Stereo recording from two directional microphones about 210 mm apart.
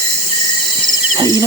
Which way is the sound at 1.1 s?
20° right (ahead or behind).